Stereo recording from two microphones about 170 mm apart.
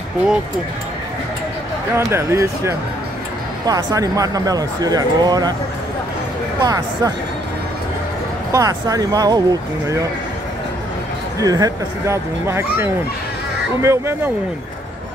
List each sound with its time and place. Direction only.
2.0 s speech: 15° right (ahead or behind)
6.6 s speech: 25° right (ahead or behind)
8.5 s speech: 20° right (ahead or behind)
11.3 s speech: 20° right (ahead or behind)